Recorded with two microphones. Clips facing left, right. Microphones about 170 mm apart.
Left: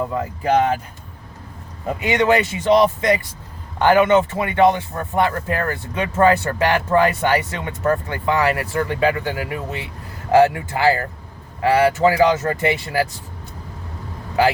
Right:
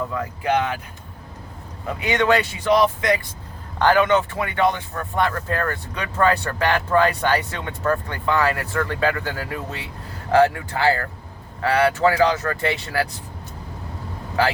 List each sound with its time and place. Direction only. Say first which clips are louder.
0.0 s speech: left 3 dB; 30° left (ahead or behind)
2.0 s speech: left 2 dB; 20° left (ahead or behind)
10.3 s speech: left 3 dB; 25° left (ahead or behind)